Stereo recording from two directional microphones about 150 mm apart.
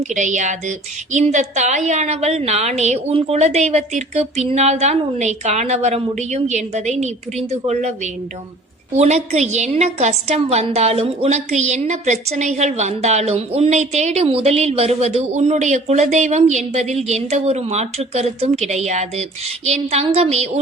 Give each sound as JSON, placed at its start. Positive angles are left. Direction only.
{"t": 0.0, "sound": "a woman's voice", "side_deg": -55}